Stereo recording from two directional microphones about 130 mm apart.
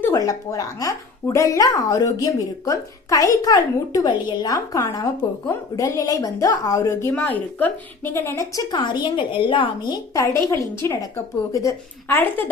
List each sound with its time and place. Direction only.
0.0 s speech: 25° left (ahead or behind)
7.1 s a woman's voice: 15° left (ahead or behind)
8.7 s a woman's voice: 35° left (ahead or behind)
10.3 s speech: 20° left (ahead or behind)